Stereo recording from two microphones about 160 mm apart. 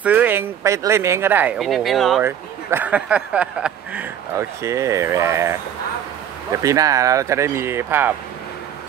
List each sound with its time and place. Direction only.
0.0 s speech: 10° right (ahead or behind)
1.6 s speech: centre (ahead or behind)
2.2 s speech: 10° right (ahead or behind)
4.6 s speech: 20° right (ahead or behind)